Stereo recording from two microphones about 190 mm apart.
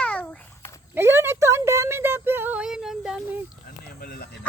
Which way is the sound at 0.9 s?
15° right (ahead or behind).